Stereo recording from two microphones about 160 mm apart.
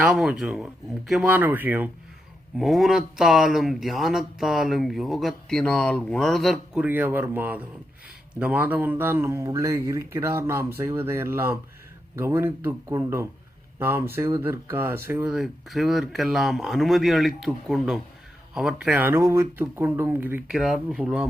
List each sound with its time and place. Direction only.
0.0 s speech: 5° right (ahead or behind)
2.6 s speech: centre (ahead or behind)
6.8 s speech: 10° right (ahead or behind)
20.5 s speech: centre (ahead or behind)